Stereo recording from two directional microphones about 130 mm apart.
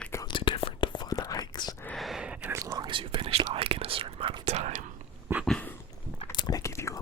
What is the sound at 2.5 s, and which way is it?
Whispering, 30° right (ahead or behind).